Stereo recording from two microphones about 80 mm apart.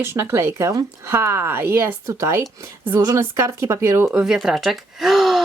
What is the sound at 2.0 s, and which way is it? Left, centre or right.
Speech, right.